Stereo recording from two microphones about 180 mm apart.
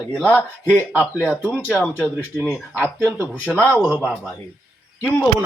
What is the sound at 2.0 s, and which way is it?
Speech, 10° left (ahead or behind).